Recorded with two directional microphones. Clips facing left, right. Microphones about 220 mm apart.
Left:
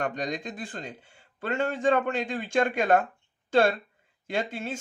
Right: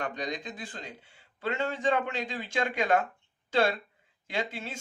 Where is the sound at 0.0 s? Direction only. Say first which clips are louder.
Left 4 dB; 50° left (ahead or behind).